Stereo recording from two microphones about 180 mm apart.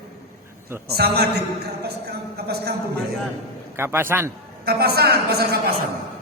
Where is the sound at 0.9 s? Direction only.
60° right (ahead or behind).